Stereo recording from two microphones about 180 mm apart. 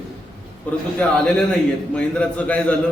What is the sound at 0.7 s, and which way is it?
A man's voice, 10° left (ahead or behind).